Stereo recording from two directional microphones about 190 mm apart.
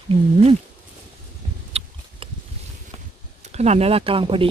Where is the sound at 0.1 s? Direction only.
30° right (ahead or behind).